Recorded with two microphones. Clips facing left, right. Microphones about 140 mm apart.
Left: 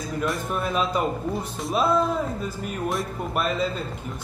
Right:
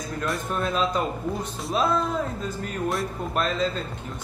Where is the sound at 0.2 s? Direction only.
5° left (ahead or behind).